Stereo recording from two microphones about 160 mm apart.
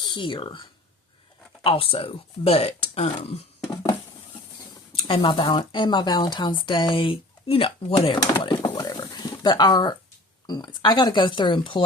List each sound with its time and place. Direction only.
0.0 s speech: 30° left (ahead or behind)
5.0 s speech: 30° left (ahead or behind)
8.6 s a sound: 25° left (ahead or behind)
10.4 s speech: 30° left (ahead or behind)